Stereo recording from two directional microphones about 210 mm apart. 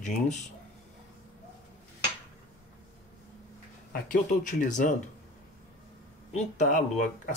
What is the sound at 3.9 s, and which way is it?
Speech, 40° left (ahead or behind).